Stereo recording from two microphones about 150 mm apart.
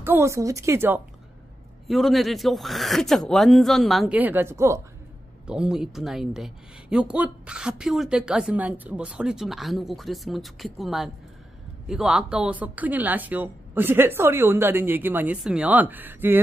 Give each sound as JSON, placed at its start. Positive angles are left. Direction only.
{"t": 0.0, "sound": "speech", "side_deg": -15}
{"t": 1.9, "sound": "speech", "side_deg": 0}
{"t": 4.2, "sound": "a woman's voice", "side_deg": -15}
{"t": 5.5, "sound": "a woman's voice", "side_deg": -5}